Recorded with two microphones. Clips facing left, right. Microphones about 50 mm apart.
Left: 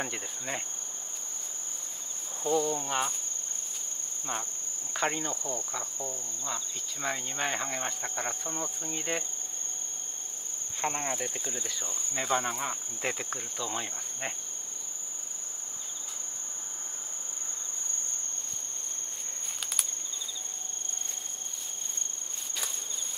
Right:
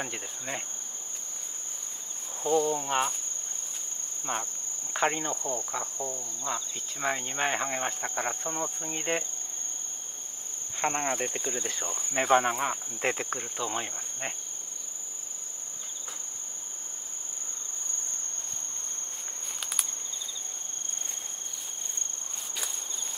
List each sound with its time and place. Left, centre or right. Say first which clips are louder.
0.0 s insect: even; centre
2.4 s insect: right 2 dB; centre
4.3 s speech: right 3 dB; right
4.9 s insect: right 3 dB; centre
10.8 s speech: right 3 dB; right